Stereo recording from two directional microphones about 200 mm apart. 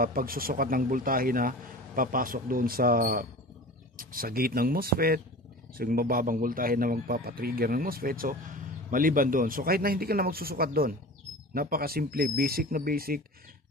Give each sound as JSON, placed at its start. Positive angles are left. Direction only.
{"t": 0.0, "sound": "speech", "side_deg": -45}